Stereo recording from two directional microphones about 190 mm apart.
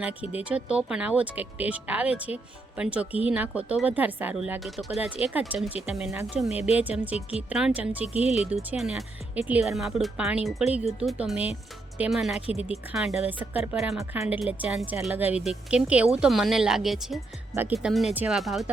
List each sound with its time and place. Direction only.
0.0 s speech: 5° right (ahead or behind)
6.5 s speech: 35° left (ahead or behind)
6.7 s speech: 10° right (ahead or behind)
8.0 s speech: 35° left (ahead or behind)
8.4 s speech: centre (ahead or behind)
14.0 s speech: 10° right (ahead or behind)
17.5 s speech: 10° right (ahead or behind)